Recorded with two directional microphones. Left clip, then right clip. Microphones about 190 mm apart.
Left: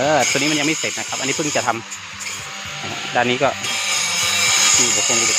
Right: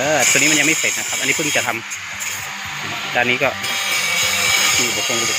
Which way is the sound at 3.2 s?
15° left (ahead or behind).